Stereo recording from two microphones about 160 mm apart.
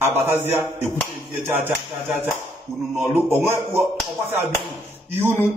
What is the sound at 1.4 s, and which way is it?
A man's voice, 15° right (ahead or behind).